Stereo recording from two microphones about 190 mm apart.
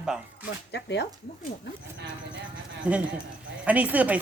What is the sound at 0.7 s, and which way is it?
Speech, 65° left (ahead or behind).